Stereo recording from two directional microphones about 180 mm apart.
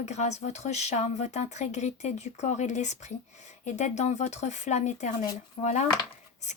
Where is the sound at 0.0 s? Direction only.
40° left (ahead or behind).